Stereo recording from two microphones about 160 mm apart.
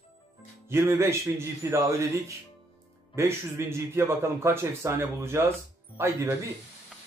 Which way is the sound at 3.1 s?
15° right (ahead or behind).